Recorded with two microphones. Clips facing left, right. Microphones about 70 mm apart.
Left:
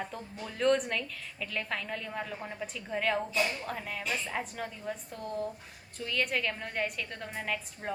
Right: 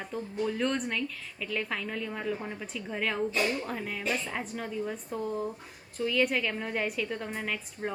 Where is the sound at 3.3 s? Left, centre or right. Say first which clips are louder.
Right 2 dB; right.